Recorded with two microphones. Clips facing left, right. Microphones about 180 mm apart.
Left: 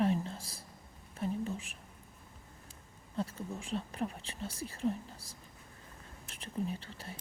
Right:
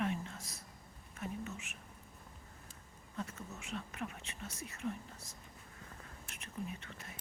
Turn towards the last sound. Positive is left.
turn(degrees=30)  # may be behind; listen again after turning